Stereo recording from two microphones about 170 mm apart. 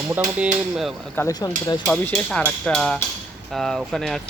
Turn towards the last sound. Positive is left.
turn(degrees=0)  # may be behind; listen again after turning